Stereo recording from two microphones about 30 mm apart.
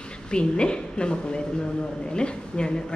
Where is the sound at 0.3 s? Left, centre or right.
Left.